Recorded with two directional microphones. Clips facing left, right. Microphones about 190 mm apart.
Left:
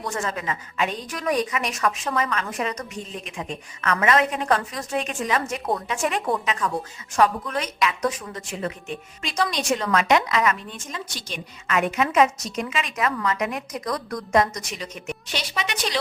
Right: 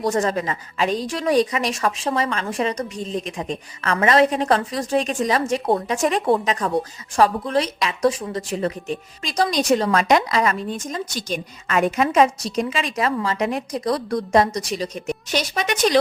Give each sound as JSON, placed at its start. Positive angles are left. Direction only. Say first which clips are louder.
{"t": 0.0, "sound": "a woman's voice", "louder": "right 8 dB", "side_deg": -35}